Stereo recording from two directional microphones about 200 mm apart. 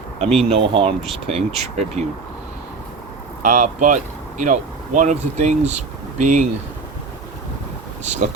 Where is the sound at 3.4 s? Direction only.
40° right (ahead or behind).